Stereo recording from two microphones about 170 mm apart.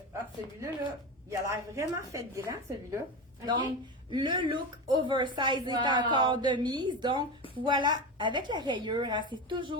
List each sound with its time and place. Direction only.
1.3 s a woman's voice: 20° right (ahead or behind)